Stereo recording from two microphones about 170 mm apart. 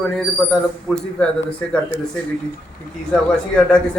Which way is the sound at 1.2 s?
5° left (ahead or behind).